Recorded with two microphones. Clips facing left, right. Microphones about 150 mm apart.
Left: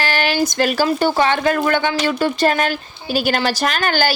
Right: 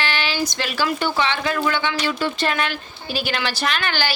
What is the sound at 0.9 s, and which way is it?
Speech, 40° left (ahead or behind).